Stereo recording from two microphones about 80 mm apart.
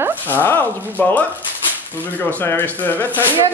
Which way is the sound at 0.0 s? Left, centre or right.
Right.